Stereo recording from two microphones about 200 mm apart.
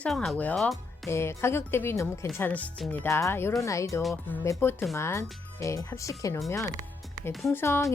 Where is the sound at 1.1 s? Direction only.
15° left (ahead or behind).